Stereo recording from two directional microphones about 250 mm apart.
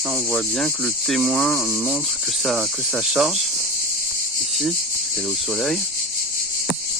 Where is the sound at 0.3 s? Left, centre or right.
Centre.